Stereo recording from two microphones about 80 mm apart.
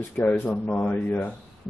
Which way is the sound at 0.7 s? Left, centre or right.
Left.